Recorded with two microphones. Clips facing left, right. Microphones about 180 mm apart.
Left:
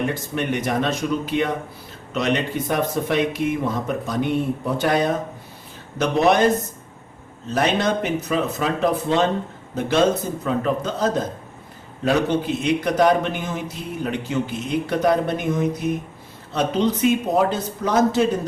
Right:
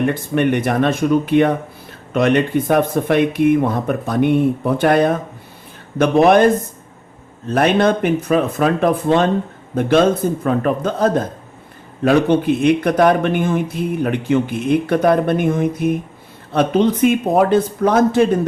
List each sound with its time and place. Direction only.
0.0 s speech: 60° right (ahead or behind)